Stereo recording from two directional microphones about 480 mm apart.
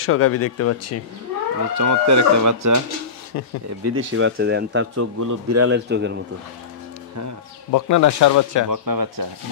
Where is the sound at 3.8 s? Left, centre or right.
Right.